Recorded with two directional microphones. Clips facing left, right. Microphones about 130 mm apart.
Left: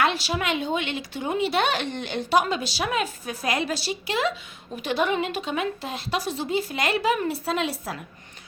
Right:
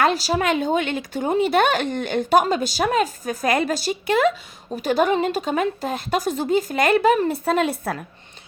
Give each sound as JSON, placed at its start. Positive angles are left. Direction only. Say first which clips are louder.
{"t": 0.0, "sound": "speech", "louder": "right 5 dB", "side_deg": -40}
{"t": 4.7, "sound": "speech", "louder": "right 5 dB", "side_deg": -40}